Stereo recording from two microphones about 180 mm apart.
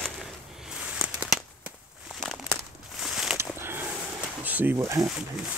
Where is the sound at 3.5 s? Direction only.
15° right (ahead or behind).